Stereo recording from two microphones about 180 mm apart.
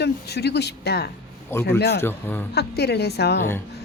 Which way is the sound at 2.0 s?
10° left (ahead or behind).